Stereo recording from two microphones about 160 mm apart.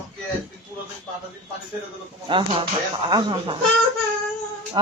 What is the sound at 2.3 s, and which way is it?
A man's voice, 35° right (ahead or behind).